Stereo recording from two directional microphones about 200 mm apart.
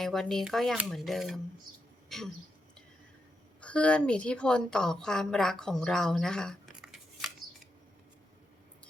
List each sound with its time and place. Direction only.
0.0 s speech: centre (ahead or behind)
2.0 s throat clearing: centre (ahead or behind)
3.6 s a woman's voice: 5° left (ahead or behind)